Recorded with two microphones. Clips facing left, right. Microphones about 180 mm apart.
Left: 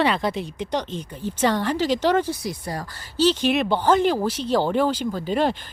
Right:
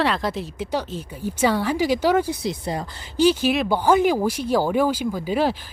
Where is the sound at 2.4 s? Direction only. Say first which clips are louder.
Right 3 dB; 20° right (ahead or behind).